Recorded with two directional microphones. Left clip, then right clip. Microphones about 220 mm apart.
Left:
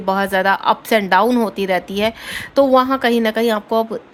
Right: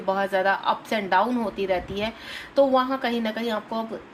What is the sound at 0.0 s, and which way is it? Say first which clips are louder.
A woman's voice: left 6 dB; 55° left (ahead or behind).